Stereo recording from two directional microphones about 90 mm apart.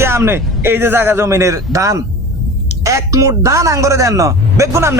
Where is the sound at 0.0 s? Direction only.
30° right (ahead or behind).